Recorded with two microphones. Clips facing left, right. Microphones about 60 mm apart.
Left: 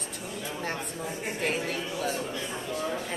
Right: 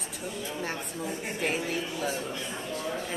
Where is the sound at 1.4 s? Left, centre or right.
Centre.